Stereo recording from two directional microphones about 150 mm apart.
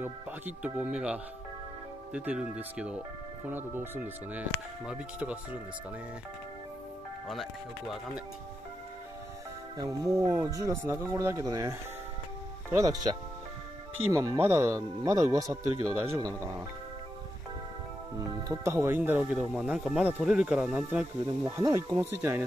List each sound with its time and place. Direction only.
0.0 s speech: 10° right (ahead or behind)
10.2 s speech: 20° right (ahead or behind)
12.7 s speech: 25° right (ahead or behind)
14.1 s speech: 15° right (ahead or behind)
18.5 s speech: 20° right (ahead or behind)
21.5 s speech: 20° right (ahead or behind)